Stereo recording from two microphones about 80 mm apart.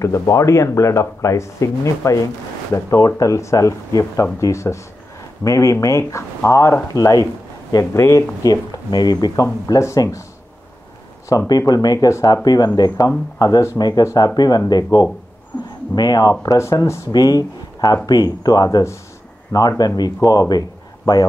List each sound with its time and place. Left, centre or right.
0.0 s speech: left
7.7 s speech: left
8.4 s speech: left
11.2 s speech: left
12.4 s speech: left
17.1 s speech: left